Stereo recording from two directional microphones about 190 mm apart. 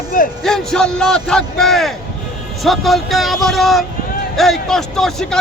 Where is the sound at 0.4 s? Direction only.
5° left (ahead or behind).